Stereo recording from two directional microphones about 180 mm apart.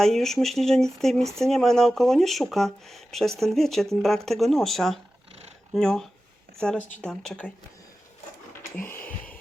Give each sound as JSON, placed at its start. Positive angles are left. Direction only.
{"t": 0.0, "sound": "speech", "side_deg": 0}
{"t": 6.7, "sound": "speech", "side_deg": 45}
{"t": 7.0, "sound": "speech", "side_deg": 5}
{"t": 8.7, "sound": "a sound", "side_deg": 10}